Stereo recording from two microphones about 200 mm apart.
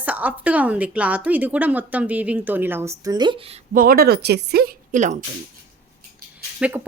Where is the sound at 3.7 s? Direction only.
45° right (ahead or behind).